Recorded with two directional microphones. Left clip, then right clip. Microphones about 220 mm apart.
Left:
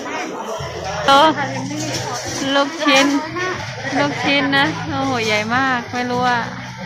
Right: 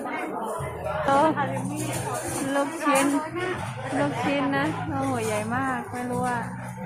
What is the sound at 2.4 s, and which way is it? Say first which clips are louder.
Speech: left 9 dB; 20° left (ahead or behind).